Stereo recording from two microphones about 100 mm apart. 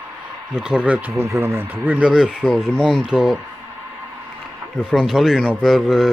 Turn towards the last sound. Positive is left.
turn(degrees=0)  # may be behind; listen again after turning